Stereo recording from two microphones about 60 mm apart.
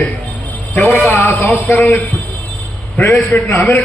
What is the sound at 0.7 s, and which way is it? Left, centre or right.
A man's voice, left.